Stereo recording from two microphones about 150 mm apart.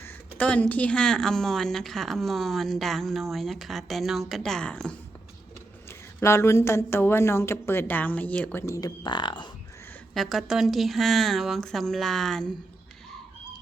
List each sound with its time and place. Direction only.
0.0 s speech: 10° left (ahead or behind)
6.1 s a woman's voice: 15° left (ahead or behind)
8.6 s speech: 20° left (ahead or behind)
10.2 s speech: centre (ahead or behind)